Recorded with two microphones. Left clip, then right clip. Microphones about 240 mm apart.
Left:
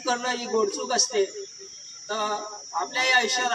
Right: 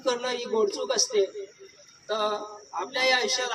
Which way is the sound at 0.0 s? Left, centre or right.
Left.